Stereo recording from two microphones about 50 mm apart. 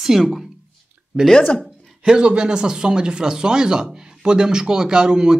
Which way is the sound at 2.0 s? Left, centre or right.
Centre.